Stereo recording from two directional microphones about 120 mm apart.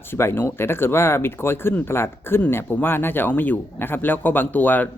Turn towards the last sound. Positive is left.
turn(degrees=15)  # may be behind; listen again after turning